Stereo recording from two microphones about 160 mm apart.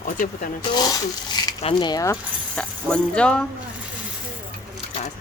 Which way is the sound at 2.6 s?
5° left (ahead or behind).